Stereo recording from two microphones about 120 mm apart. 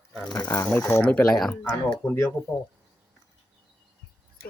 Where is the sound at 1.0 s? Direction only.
10° left (ahead or behind).